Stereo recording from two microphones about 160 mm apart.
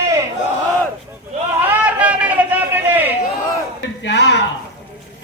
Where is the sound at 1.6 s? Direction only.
10° right (ahead or behind).